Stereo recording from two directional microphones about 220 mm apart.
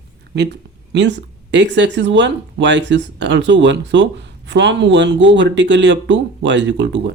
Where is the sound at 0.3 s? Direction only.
50° right (ahead or behind).